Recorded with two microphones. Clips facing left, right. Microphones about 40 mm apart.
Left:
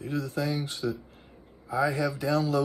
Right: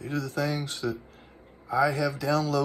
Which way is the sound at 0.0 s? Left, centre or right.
Right.